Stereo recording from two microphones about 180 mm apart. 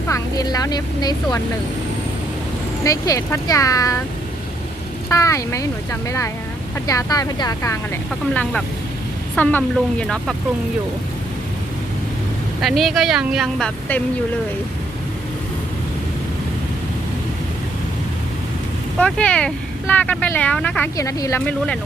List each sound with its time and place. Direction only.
0.1 s speech: 20° left (ahead or behind)
2.8 s speech: 20° left (ahead or behind)
5.0 s speech: 15° left (ahead or behind)
8.3 s a woman's voice: 5° left (ahead or behind)
12.6 s a woman's voice: centre (ahead or behind)
18.9 s speech: 5° left (ahead or behind)